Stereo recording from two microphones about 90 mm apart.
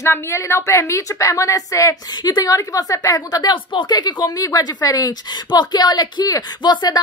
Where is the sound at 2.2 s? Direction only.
45° left (ahead or behind).